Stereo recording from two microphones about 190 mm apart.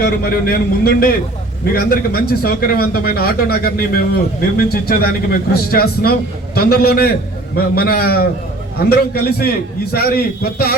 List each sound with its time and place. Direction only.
0.0 s speech: 55° left (ahead or behind)